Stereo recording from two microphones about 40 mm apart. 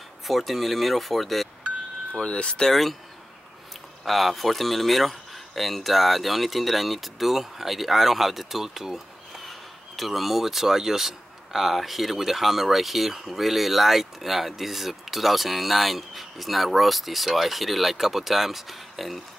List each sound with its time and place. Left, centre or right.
0.3 s speech: centre
2.2 s speech: left
2.7 s speech: centre
4.0 s speech: centre